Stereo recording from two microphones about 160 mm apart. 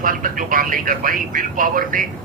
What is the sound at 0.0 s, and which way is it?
Speech, 60° right (ahead or behind).